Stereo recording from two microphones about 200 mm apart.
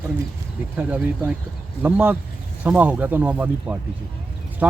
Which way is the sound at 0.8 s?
5° right (ahead or behind).